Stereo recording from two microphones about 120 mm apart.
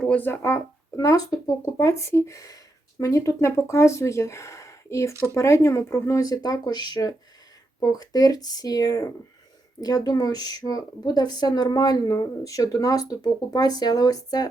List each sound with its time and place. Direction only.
0.0 s speech: 10° left (ahead or behind); by 14.4 s 35° left (ahead or behind)